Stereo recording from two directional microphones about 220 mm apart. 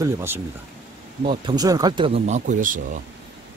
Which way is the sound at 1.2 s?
25° right (ahead or behind).